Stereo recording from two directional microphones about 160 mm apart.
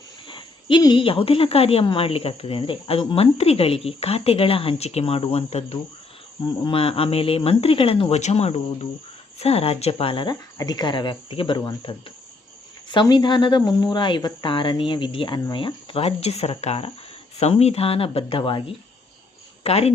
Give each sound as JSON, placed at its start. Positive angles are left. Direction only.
{"t": 0.3, "sound": "speech", "side_deg": 30}
{"t": 19.6, "sound": "speech", "side_deg": 40}